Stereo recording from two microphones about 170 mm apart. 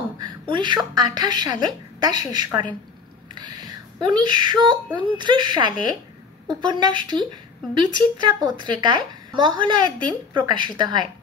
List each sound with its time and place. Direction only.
0.2 s a woman's voice: 25° right (ahead or behind)